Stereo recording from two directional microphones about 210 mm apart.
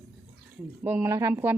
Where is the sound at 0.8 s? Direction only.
10° right (ahead or behind).